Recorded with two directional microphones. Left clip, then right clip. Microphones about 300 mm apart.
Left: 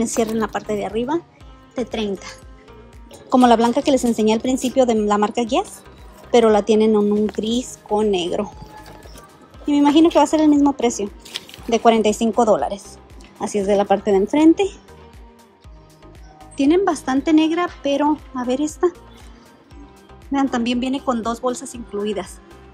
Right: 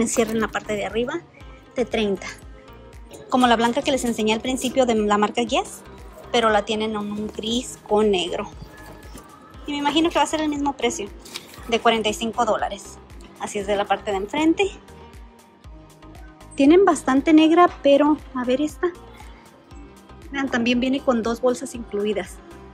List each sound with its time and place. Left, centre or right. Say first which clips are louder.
0.0 s a woman's voice: left 1 dB; centre
9.7 s a woman's voice: left 7 dB; centre
11.2 s a sound: left 4 dB; centre
11.7 s a woman's voice: left 4 dB; centre
16.5 s a woman's voice: right 2 dB; centre
20.3 s a woman's voice: left 2 dB; centre